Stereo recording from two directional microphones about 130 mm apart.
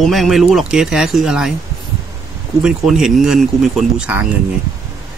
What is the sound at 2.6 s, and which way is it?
Speech, 5° right (ahead or behind).